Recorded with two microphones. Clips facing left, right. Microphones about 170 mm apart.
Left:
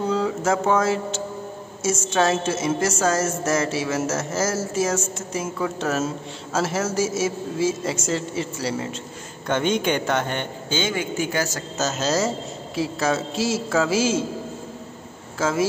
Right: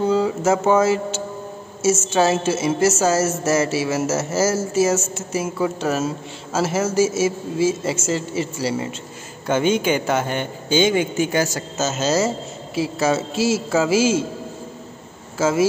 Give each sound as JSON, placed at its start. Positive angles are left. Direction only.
{"t": 0.1, "sound": "a woman's voice", "side_deg": -5}
{"t": 10.8, "sound": "speech", "side_deg": -20}
{"t": 11.7, "sound": "a woman's voice", "side_deg": 0}
{"t": 15.3, "sound": "speech", "side_deg": -5}